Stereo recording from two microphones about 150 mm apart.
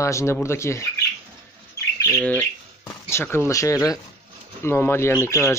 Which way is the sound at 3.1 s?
15° left (ahead or behind).